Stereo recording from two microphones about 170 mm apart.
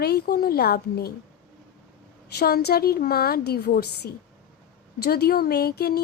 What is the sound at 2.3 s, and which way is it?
Speech, 70° left (ahead or behind).